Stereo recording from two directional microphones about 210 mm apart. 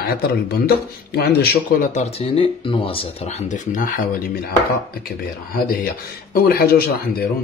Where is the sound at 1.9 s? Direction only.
25° left (ahead or behind).